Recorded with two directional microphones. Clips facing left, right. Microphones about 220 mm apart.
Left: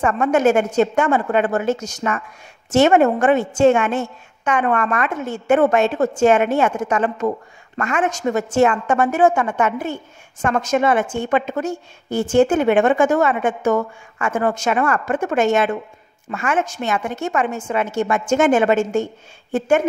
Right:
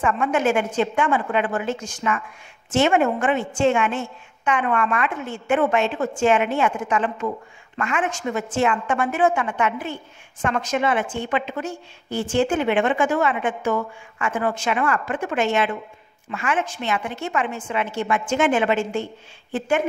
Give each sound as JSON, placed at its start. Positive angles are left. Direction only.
{"t": 0.0, "sound": "a woman's voice", "side_deg": 45}